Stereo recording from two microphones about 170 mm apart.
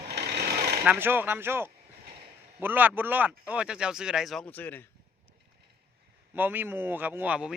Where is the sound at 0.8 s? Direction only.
10° right (ahead or behind).